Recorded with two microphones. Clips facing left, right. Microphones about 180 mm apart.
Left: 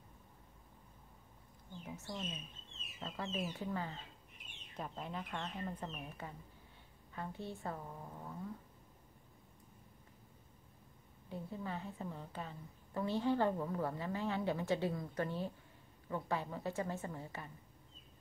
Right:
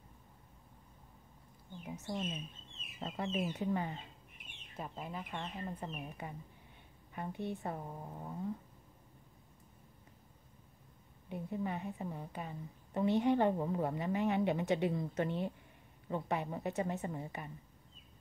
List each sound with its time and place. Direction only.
3.0 s a woman's voice: 25° right (ahead or behind)
4.7 s a woman's voice: 5° right (ahead or behind); by 8.4 s 25° right (ahead or behind)
11.2 s a woman's voice: 15° right (ahead or behind)